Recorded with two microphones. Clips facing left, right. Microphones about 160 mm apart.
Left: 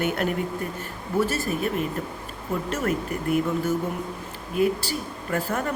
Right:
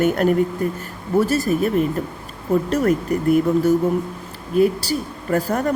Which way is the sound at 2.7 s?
40° right (ahead or behind).